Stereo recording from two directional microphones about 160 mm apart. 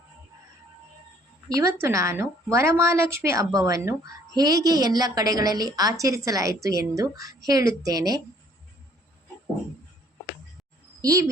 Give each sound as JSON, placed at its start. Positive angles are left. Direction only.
{"t": 1.5, "sound": "a woman's voice", "side_deg": -20}
{"t": 11.0, "sound": "a woman's voice", "side_deg": -20}